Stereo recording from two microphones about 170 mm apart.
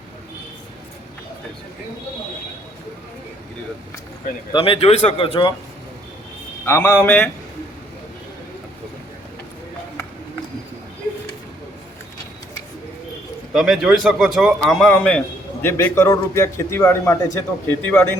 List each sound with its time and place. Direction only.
4.5 s speech: 30° left (ahead or behind)
6.7 s a man's voice: 15° left (ahead or behind)
13.5 s a man's voice: centre (ahead or behind)